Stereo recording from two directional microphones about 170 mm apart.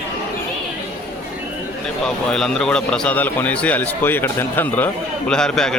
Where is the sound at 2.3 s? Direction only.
5° left (ahead or behind).